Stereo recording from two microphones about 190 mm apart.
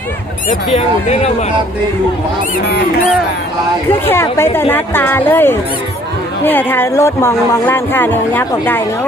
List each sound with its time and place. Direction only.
0.7 s speech: 35° left (ahead or behind)
3.8 s speech: 10° left (ahead or behind)